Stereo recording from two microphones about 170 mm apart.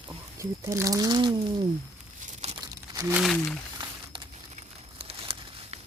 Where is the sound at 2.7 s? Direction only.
20° right (ahead or behind).